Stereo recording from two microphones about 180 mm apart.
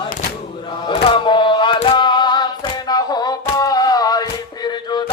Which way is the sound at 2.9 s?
20° left (ahead or behind).